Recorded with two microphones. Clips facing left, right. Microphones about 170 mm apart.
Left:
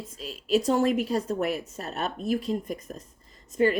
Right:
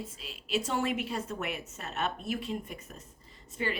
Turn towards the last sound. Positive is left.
turn(degrees=45)  # may be behind; listen again after turning